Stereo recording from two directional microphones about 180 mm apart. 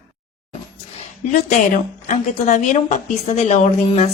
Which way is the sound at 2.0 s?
45° left (ahead or behind).